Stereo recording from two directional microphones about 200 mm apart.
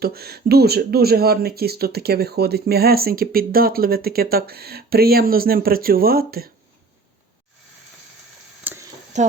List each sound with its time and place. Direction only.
0.0 s speech: 50° right (ahead or behind)
8.6 s a sound: 10° right (ahead or behind)
9.1 s speech: 35° right (ahead or behind)